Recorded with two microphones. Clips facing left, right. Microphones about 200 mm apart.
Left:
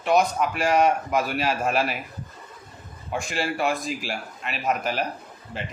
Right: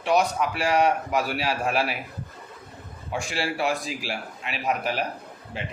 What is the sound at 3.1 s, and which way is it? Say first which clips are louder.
A man's voice: left 1 dB; 45° left (ahead or behind).